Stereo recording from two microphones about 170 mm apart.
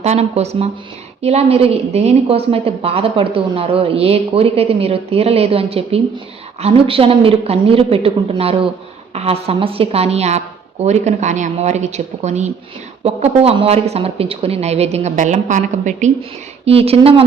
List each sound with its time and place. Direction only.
0.0 s a woman's voice: 40° right (ahead or behind)
16.6 s a woman's voice: 35° right (ahead or behind)